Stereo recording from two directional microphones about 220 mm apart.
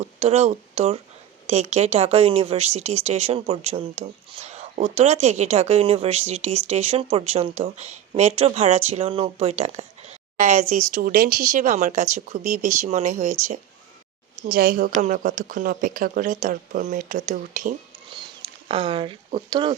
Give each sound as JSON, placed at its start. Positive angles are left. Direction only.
{"t": 0.0, "sound": "speech", "side_deg": -25}
{"t": 14.4, "sound": "a woman's voice", "side_deg": -40}
{"t": 18.7, "sound": "speech", "side_deg": -25}